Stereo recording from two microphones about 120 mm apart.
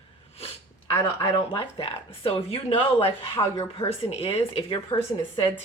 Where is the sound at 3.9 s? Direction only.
55° left (ahead or behind).